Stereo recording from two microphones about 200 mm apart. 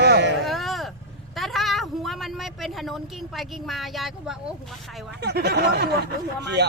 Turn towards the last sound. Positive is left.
turn(degrees=-55)  # may be behind; listen again after turning